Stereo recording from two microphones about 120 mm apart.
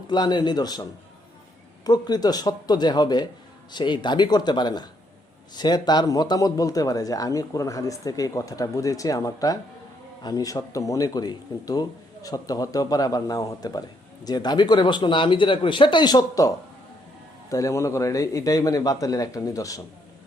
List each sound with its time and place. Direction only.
0.1 s speech: 35° left (ahead or behind)
17.5 s speech: 25° left (ahead or behind)